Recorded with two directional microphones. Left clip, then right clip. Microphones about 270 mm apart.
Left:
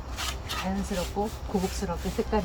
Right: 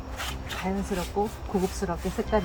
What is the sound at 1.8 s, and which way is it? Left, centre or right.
Speech, right.